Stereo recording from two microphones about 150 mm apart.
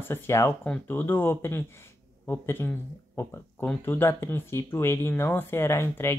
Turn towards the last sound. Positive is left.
turn(degrees=15)  # may be behind; listen again after turning